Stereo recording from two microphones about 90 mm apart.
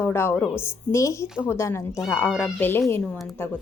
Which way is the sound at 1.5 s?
30° left (ahead or behind).